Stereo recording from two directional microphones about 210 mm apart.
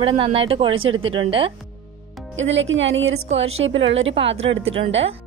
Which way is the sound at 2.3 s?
65° right (ahead or behind).